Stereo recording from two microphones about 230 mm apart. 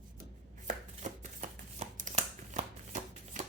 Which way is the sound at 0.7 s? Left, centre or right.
Right.